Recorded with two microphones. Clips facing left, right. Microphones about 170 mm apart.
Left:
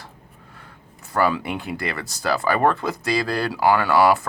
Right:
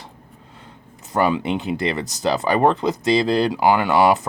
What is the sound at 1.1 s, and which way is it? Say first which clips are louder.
Speech: right 2 dB; 20° right (ahead or behind).